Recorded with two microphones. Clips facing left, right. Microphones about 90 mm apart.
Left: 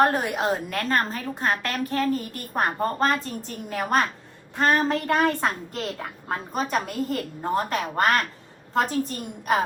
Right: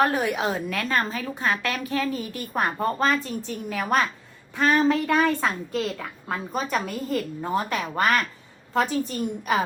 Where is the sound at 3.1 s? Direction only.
45° left (ahead or behind).